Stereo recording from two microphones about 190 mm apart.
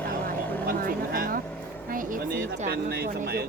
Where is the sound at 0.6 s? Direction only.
50° right (ahead or behind).